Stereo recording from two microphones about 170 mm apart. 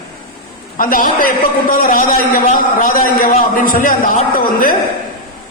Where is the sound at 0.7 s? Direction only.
55° left (ahead or behind).